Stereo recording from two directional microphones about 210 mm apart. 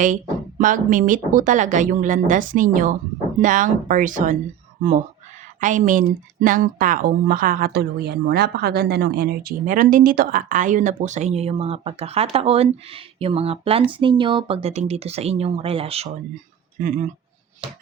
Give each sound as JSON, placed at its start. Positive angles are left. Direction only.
{"t": 0.6, "sound": "speech", "side_deg": -40}